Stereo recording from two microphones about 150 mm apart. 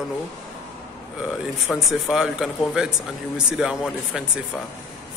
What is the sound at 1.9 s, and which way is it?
A man's voice, 5° right (ahead or behind).